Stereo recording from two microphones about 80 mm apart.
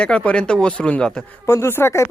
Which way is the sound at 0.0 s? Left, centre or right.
Centre.